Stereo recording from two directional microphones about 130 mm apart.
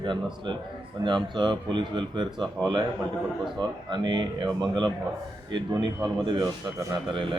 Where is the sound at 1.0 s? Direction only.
35° right (ahead or behind).